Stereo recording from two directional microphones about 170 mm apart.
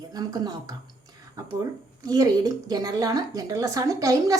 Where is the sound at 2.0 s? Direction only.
20° right (ahead or behind).